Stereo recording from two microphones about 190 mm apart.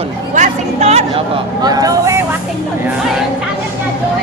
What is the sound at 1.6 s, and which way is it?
Speech, 20° right (ahead or behind).